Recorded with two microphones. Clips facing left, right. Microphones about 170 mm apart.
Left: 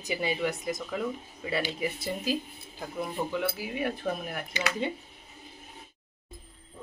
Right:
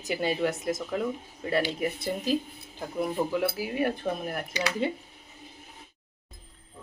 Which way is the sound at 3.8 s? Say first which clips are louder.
Right 3 dB; 40° right (ahead or behind).